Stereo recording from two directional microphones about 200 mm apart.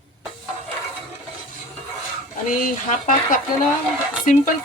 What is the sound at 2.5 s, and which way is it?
A woman's voice, 45° left (ahead or behind).